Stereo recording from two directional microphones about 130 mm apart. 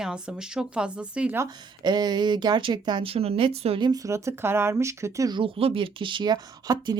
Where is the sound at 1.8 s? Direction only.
35° right (ahead or behind).